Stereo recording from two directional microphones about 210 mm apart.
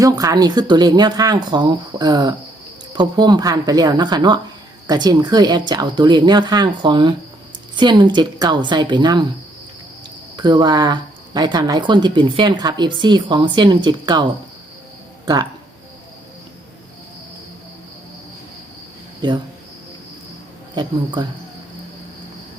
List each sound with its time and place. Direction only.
0.0 s speech: 15° right (ahead or behind)
10.3 s speech: 20° right (ahead or behind)
19.2 s speech: 20° right (ahead or behind)
20.7 s speech: 20° right (ahead or behind)